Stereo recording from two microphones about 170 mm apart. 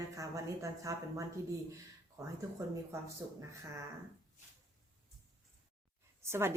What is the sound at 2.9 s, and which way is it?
Speech, 15° right (ahead or behind).